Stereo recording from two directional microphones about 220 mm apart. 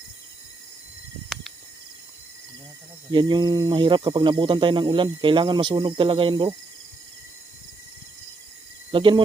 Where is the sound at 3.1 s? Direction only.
20° right (ahead or behind).